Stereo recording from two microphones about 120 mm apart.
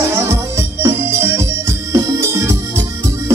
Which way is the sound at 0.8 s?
20° right (ahead or behind).